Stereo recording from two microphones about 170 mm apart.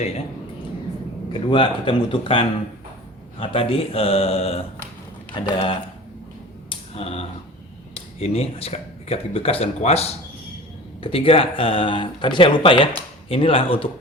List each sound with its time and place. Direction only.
1.3 s speech: 30° left (ahead or behind)
6.7 s a sound: 35° left (ahead or behind)
7.9 s speech: 35° left (ahead or behind)